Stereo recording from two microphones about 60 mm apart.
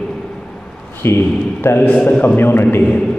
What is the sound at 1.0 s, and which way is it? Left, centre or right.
A man's voice, left.